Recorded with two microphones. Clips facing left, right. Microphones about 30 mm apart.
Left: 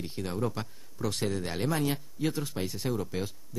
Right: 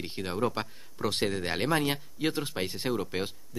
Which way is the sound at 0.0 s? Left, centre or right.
Right.